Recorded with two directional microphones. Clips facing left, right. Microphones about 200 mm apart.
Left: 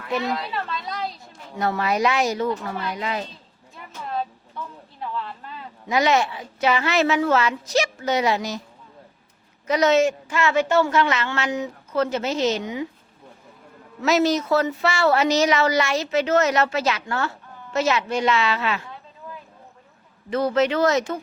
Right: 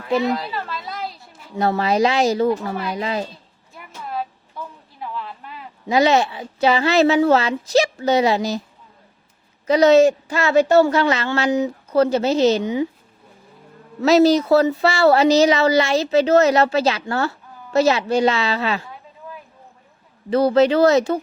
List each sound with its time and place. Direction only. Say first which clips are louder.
0.4 s a sound: right 1 dB; 5° right (ahead or behind)
1.5 s speech: right 4 dB; 30° right (ahead or behind)
4.1 s a sound: even; 10° right (ahead or behind)
5.9 s speech: right 4 dB; 30° right (ahead or behind)
9.6 s speech: right 6 dB; 30° right (ahead or behind)
14.0 s speech: right 6 dB; 35° right (ahead or behind)
20.3 s speech: right 6 dB; 35° right (ahead or behind)